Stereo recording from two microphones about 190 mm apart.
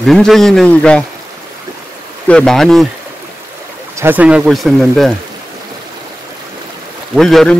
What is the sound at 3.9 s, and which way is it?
Speech, 10° right (ahead or behind).